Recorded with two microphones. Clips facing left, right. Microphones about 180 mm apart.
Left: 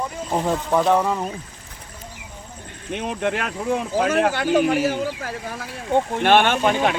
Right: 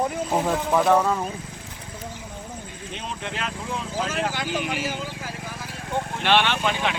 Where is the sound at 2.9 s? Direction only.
60° left (ahead or behind).